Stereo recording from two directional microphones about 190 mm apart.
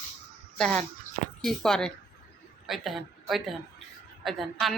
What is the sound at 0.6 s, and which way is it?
A woman's voice, 5° left (ahead or behind).